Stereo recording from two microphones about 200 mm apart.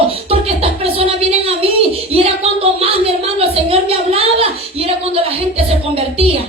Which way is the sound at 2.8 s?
30° right (ahead or behind).